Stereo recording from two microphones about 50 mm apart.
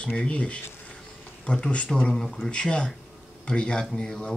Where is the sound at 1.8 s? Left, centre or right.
Centre.